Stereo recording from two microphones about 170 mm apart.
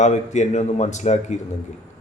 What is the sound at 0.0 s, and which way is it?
Speech, 45° left (ahead or behind).